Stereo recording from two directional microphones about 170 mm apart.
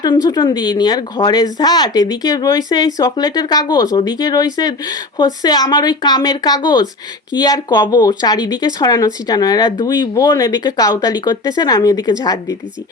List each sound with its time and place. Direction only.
0.0 s speech: 20° left (ahead or behind)